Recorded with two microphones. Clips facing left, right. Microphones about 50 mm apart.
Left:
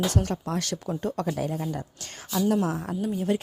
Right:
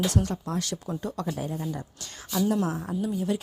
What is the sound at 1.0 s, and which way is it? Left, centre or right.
Speech, left.